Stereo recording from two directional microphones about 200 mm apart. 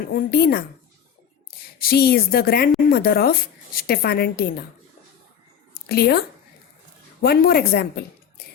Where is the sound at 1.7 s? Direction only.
50° left (ahead or behind).